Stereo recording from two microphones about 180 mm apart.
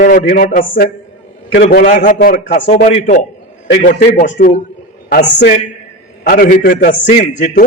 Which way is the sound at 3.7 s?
45° left (ahead or behind).